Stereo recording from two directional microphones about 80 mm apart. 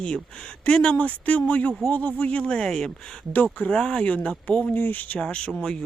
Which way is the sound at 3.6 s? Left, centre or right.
Centre.